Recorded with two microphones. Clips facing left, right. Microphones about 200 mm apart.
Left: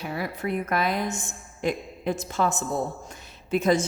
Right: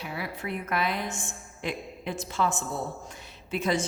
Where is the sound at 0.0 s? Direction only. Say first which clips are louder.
Left 5 dB; 45° left (ahead or behind).